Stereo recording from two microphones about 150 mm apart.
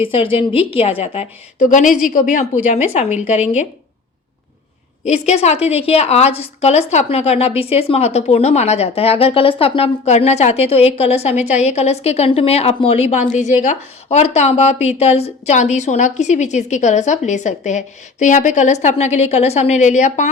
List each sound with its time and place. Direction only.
0.0 s a woman's voice: 35° left (ahead or behind)
1.6 s a woman's voice: 60° left (ahead or behind)
5.0 s a woman's voice: 50° left (ahead or behind)